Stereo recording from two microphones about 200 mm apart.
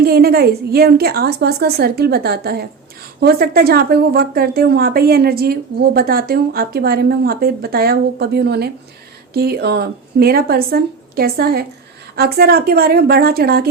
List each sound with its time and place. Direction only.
0.0 s a woman's voice: 50° right (ahead or behind)